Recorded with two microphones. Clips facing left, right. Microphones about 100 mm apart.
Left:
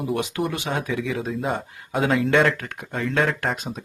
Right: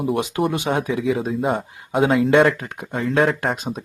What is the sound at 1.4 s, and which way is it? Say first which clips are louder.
Speech: right 5 dB; 5° right (ahead or behind).